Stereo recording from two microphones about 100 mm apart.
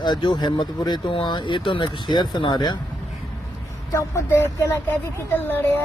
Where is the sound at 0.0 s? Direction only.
50° left (ahead or behind).